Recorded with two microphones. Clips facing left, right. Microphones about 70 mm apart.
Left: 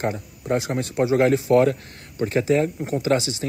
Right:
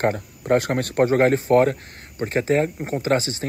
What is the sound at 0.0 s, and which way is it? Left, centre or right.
Speech, right.